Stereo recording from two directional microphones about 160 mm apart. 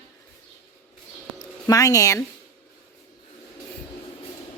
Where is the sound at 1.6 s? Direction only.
20° left (ahead or behind).